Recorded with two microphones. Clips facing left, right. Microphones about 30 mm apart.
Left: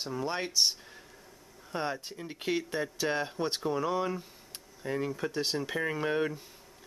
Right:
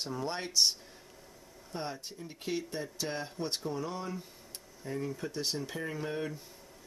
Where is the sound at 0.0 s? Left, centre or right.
Centre.